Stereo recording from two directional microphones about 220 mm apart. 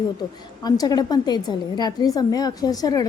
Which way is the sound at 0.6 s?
20° left (ahead or behind).